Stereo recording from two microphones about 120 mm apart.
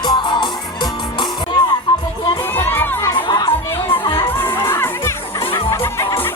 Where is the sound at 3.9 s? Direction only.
45° left (ahead or behind).